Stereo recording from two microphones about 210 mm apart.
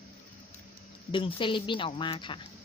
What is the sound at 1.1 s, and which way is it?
A woman's voice, 25° left (ahead or behind).